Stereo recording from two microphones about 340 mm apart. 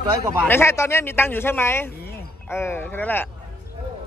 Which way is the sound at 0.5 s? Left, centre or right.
Centre.